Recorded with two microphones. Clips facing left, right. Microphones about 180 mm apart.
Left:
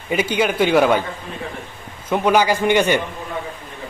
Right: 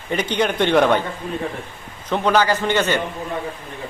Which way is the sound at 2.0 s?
10° left (ahead or behind).